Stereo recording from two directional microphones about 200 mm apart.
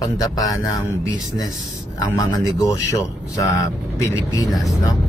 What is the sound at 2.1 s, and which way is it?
Speech, 15° left (ahead or behind).